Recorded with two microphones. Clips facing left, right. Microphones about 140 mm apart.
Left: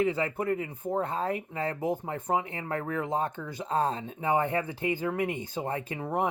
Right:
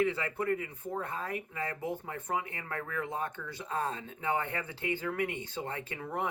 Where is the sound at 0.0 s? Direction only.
25° left (ahead or behind).